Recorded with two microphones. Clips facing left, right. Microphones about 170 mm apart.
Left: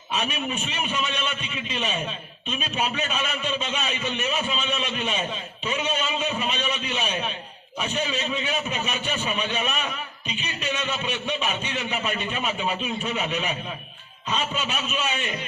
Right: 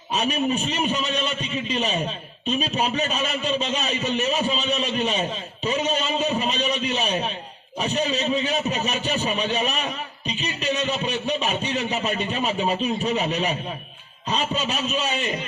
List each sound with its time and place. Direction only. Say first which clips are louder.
0.1 s a man's voice: right 5 dB; 35° right (ahead or behind)